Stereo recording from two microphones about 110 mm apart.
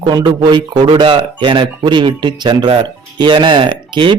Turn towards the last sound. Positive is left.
turn(degrees=-50)  # may be behind; listen again after turning